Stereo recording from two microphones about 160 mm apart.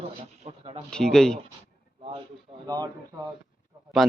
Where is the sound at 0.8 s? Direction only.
5° left (ahead or behind).